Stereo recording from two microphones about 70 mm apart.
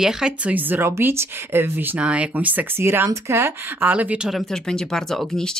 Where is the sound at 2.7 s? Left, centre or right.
Right.